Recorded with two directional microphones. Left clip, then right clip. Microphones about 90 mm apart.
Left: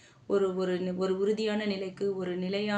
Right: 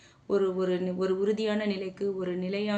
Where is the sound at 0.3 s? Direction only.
20° right (ahead or behind).